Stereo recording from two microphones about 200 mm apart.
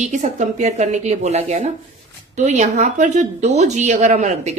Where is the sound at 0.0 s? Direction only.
35° right (ahead or behind).